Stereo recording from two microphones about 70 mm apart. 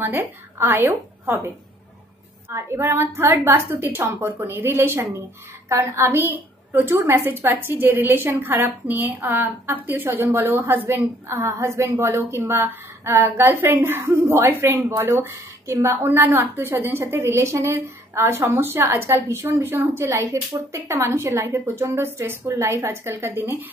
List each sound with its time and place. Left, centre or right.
0.0 s a woman's voice: right
2.5 s a woman's voice: right